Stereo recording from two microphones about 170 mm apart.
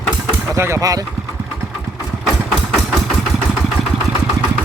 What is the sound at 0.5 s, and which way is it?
Speech, 15° right (ahead or behind).